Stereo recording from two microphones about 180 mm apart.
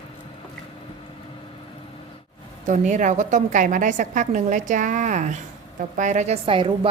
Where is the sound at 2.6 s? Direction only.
45° right (ahead or behind).